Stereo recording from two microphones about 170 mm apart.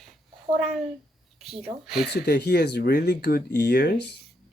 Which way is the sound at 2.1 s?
75° left (ahead or behind).